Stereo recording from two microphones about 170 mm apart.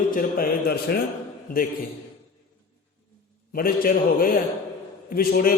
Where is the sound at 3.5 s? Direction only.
60° left (ahead or behind).